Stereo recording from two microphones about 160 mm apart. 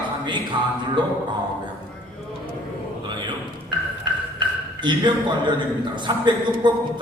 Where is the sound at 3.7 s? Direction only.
30° right (ahead or behind).